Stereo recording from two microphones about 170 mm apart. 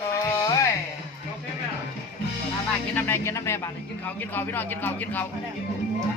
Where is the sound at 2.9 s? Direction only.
15° left (ahead or behind).